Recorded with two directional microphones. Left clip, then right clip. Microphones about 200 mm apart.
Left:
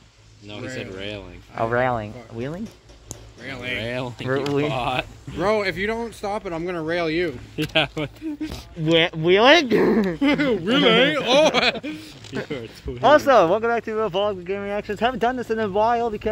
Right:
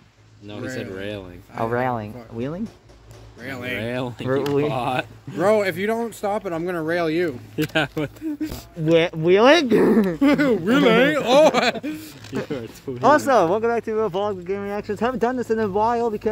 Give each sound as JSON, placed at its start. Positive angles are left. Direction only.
{"t": 0.5, "sound": "speech", "side_deg": -35}
{"t": 1.5, "sound": "speech", "side_deg": 0}
{"t": 3.4, "sound": "speech", "side_deg": -45}
{"t": 8.8, "sound": "speech", "side_deg": -15}
{"t": 10.2, "sound": "speech", "side_deg": -50}
{"t": 13.0, "sound": "speech", "side_deg": -10}